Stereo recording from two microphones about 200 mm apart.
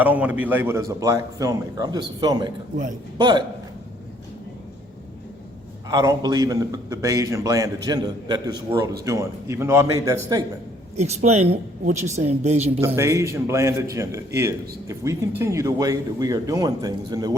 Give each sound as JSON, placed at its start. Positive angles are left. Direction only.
{"t": 0.0, "sound": "a man's voice", "side_deg": -5}
{"t": 5.9, "sound": "a man's voice", "side_deg": -20}
{"t": 10.9, "sound": "speech", "side_deg": -35}
{"t": 13.0, "sound": "a man's voice", "side_deg": -15}